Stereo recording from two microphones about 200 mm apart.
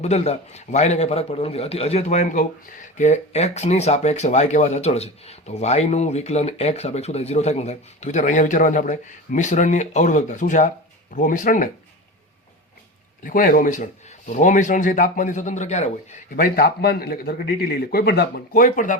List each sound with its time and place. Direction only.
0.0 s speech: 35° left (ahead or behind)
13.2 s speech: 45° left (ahead or behind)